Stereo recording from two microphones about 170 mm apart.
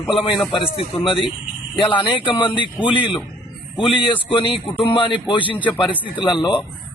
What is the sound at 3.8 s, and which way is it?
Speech, 30° left (ahead or behind).